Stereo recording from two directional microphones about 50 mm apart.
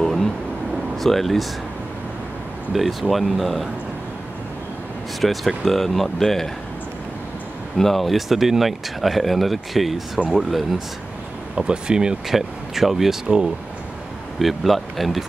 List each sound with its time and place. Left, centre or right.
0.0 s vehicle: centre
0.9 s speech: centre
2.7 s speech: centre
5.2 s speech: centre
7.7 s speech: centre
11.5 s speech: centre
12.4 s speech: centre
14.4 s speech: centre